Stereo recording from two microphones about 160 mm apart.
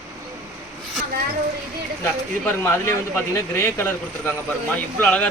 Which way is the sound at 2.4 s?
15° left (ahead or behind).